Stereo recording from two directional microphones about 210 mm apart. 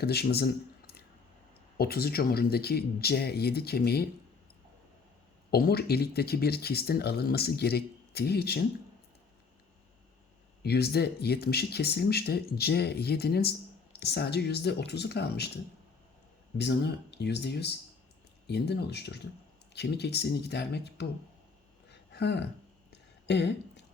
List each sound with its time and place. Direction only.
0.0 s speech: 50° left (ahead or behind)
5.5 s speech: 45° left (ahead or behind)
10.6 s speech: 50° left (ahead or behind)
16.6 s speech: 55° left (ahead or behind)
21.8 s a sound: 55° left (ahead or behind)